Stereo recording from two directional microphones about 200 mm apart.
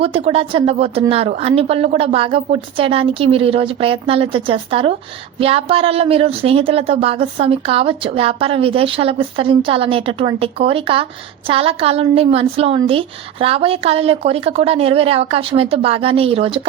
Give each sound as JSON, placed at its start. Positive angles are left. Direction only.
{"t": 0.0, "sound": "speech", "side_deg": -30}